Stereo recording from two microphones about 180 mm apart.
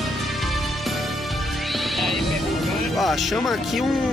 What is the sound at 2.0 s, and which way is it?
Music, centre (ahead or behind).